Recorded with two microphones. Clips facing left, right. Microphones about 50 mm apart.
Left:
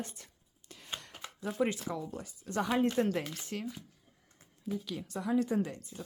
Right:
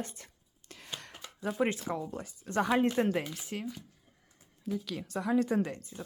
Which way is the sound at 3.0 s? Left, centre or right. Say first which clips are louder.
Right 1 dB; right.